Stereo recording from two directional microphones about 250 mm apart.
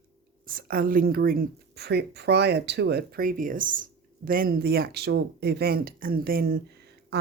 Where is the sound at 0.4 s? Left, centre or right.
Right.